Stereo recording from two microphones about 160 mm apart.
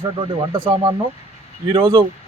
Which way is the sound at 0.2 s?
30° right (ahead or behind).